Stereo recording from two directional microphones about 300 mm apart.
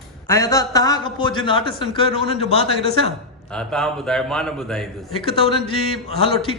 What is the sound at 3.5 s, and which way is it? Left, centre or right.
A man's voice, centre.